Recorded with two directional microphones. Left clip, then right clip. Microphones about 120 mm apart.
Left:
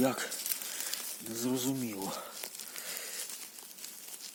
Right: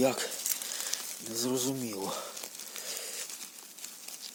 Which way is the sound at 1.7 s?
30° right (ahead or behind).